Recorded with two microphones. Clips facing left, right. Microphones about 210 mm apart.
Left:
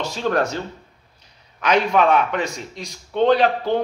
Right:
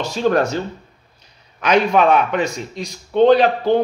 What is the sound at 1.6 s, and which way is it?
Speech, 20° right (ahead or behind).